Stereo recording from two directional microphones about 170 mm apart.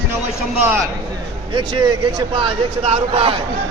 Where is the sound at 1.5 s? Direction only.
25° right (ahead or behind).